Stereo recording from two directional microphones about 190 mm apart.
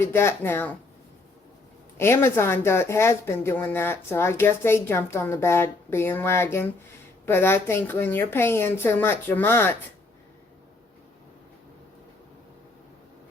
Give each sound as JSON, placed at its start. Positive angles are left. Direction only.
{"t": 0.0, "sound": "speech", "side_deg": 15}
{"t": 2.0, "sound": "speech", "side_deg": 15}